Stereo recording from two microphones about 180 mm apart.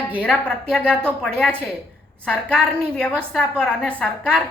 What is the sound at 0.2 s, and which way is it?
A woman's voice, 5° left (ahead or behind).